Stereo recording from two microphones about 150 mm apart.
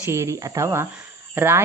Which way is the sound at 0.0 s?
15° right (ahead or behind).